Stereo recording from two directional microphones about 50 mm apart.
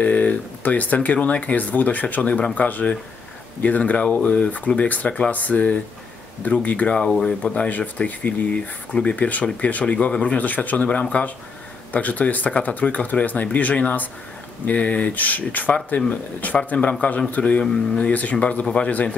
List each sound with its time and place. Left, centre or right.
0.0 s speech: left
6.9 s speech: centre; by 16.1 s left
16.5 s speech: left